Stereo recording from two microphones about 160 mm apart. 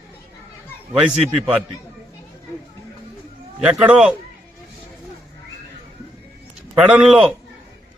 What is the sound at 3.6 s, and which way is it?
Speech, 5° right (ahead or behind).